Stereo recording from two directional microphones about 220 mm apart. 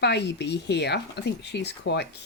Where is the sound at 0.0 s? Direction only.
50° left (ahead or behind).